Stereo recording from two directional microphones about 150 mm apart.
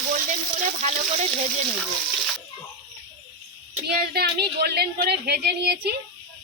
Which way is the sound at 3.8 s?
90° right.